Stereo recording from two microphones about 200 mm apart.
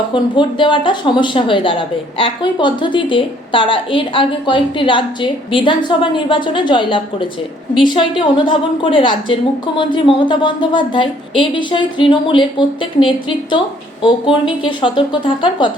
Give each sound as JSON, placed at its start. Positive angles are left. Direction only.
{"t": 0.1, "sound": "speech", "side_deg": 25}
{"t": 14.6, "sound": "speech", "side_deg": 25}